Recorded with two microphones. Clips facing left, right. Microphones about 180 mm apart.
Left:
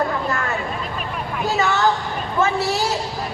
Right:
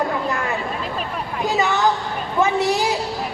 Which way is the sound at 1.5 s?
15° right (ahead or behind).